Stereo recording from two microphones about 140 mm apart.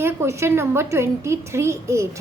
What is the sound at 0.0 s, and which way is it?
A woman's voice, 20° right (ahead or behind).